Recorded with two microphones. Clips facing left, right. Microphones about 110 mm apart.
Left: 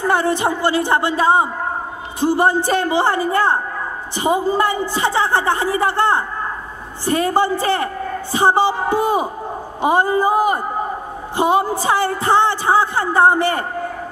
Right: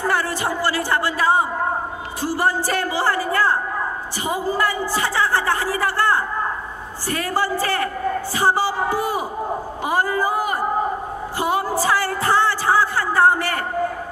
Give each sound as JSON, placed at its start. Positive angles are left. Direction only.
{"t": 0.0, "sound": "speech", "side_deg": 20}